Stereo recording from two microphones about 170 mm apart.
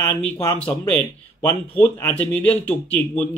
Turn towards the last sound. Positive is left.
turn(degrees=10)  # may be behind; listen again after turning